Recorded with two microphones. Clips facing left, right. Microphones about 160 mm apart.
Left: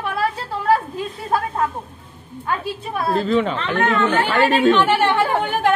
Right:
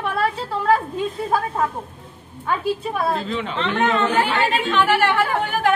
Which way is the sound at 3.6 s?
20° right (ahead or behind).